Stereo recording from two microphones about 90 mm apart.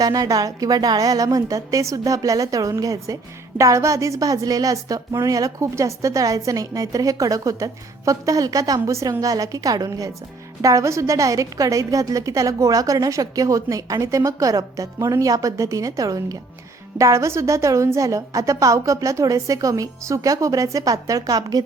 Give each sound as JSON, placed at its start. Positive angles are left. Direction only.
{"t": 0.0, "sound": "a woman's voice", "side_deg": -40}